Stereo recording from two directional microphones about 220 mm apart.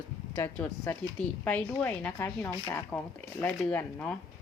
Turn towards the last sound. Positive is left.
turn(degrees=5)  # may be behind; listen again after turning